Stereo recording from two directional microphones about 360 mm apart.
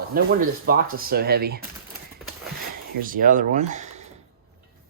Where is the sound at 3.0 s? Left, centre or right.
Right.